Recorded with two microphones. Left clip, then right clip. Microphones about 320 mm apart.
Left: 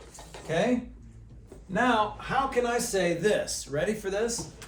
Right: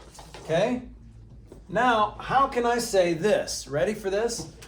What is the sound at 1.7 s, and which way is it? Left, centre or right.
A man's voice, centre.